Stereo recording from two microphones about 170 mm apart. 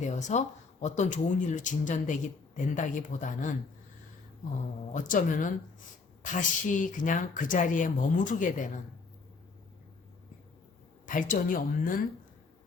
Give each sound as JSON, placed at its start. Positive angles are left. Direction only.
{"t": 0.0, "sound": "speech", "side_deg": 45}
{"t": 4.9, "sound": "speech", "side_deg": 50}
{"t": 11.0, "sound": "speech", "side_deg": 50}